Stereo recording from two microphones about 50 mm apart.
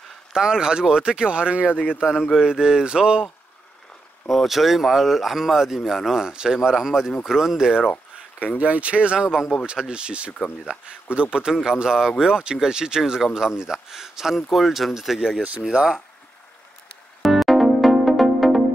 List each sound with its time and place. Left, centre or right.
0.3 s speech: centre
2.0 s speech: centre
4.3 s speech: centre
8.5 s speech: right
17.2 s music: centre